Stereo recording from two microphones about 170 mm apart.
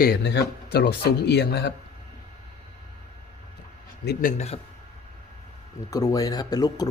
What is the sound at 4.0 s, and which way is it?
Speech, 65° left (ahead or behind).